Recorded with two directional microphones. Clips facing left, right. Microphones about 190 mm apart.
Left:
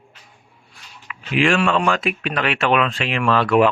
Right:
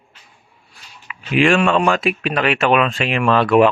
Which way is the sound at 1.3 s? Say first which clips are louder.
Right 3 dB; 20° right (ahead or behind).